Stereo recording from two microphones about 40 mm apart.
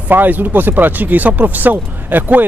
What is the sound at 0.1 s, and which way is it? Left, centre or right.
Speech, right.